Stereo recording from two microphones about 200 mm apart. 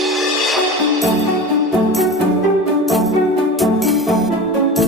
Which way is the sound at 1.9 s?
Centre (ahead or behind).